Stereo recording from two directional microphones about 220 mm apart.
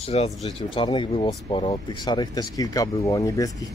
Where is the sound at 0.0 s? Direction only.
25° left (ahead or behind).